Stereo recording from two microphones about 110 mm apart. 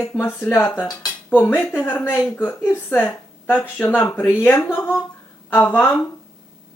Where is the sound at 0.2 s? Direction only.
20° left (ahead or behind).